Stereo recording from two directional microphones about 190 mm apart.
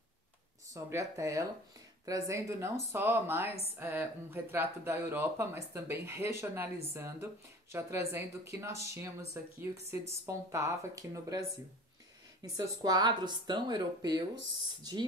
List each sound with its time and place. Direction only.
0.7 s speech: 15° right (ahead or behind)
12.5 s speech: 20° right (ahead or behind)